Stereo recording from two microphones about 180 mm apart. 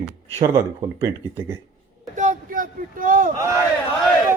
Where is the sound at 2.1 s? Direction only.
45° right (ahead or behind).